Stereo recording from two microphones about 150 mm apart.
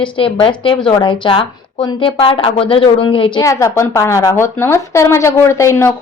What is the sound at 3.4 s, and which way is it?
A woman's voice, 20° left (ahead or behind).